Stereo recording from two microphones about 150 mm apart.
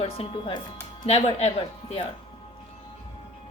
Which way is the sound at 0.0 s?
40° left (ahead or behind).